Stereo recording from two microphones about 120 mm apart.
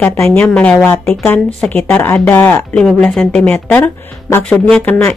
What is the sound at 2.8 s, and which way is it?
Speech, 5° left (ahead or behind).